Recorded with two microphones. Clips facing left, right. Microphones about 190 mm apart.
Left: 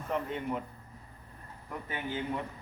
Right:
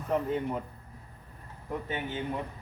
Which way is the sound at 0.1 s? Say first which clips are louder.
Right 4 dB; 40° right (ahead or behind).